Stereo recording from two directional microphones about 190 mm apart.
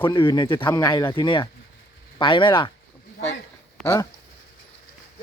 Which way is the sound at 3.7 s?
15° left (ahead or behind).